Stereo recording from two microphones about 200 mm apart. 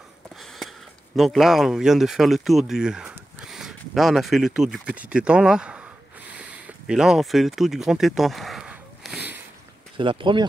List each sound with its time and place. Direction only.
1.1 s speech: centre (ahead or behind)
6.3 s a sound: 5° right (ahead or behind)
9.9 s speech: 25° right (ahead or behind)